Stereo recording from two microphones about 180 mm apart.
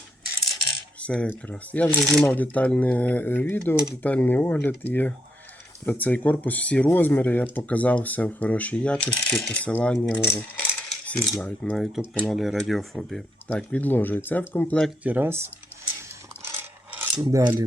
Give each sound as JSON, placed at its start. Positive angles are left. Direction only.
{"t": 1.0, "sound": "speech", "side_deg": 5}
{"t": 15.0, "sound": "speech", "side_deg": -10}
{"t": 17.2, "sound": "filing", "side_deg": -25}